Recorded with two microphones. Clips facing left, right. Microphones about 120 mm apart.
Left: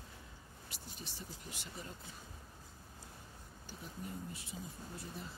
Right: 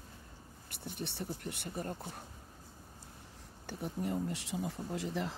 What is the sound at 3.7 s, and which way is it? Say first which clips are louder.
Speech: right 10 dB; 70° right (ahead or behind).